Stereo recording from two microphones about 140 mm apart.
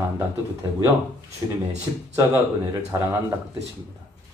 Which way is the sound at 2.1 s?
20° right (ahead or behind).